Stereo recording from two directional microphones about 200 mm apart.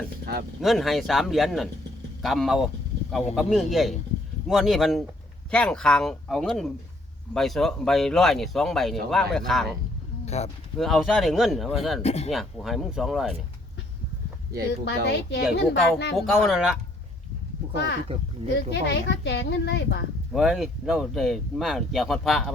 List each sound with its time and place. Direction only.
0.3 s speech: 50° right (ahead or behind)
0.6 s speech: centre (ahead or behind)
10.2 s speech: 35° left (ahead or behind)
10.8 s speech: centre (ahead or behind)
12.0 s speech: 30° left (ahead or behind)
12.3 s speech: centre (ahead or behind)
14.8 s speech: 55° left (ahead or behind)
16.1 s speech: centre (ahead or behind)
18.5 s speech: 60° left (ahead or behind)
20.3 s speech: centre (ahead or behind)